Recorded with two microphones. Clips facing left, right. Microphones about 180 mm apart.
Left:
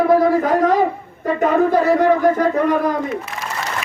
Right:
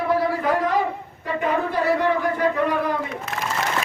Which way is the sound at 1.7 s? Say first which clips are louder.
Left 6 dB; 45° left (ahead or behind).